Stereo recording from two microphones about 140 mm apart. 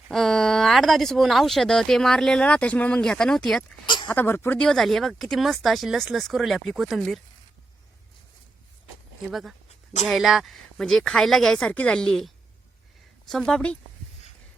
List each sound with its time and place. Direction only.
0.1 s speech: centre (ahead or behind)
3.8 s speech: 35° left (ahead or behind)
4.1 s speech: 15° left (ahead or behind)
9.3 s speech: centre (ahead or behind)